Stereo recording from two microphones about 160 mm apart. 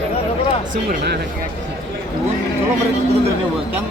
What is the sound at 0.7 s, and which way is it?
Speech, 75° right (ahead or behind).